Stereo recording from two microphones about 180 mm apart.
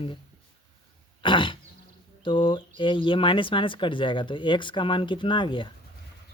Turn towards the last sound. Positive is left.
turn(degrees=25)  # may be behind; listen again after turning